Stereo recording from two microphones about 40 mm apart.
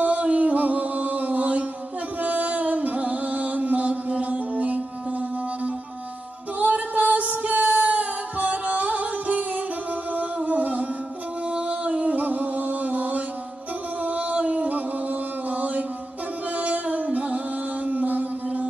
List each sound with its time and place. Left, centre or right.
0.0 s music: right
6.6 s female singing: right
10.1 s music: right